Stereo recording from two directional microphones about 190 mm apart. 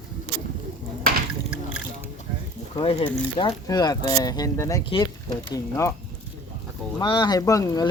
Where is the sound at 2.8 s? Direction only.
25° left (ahead or behind).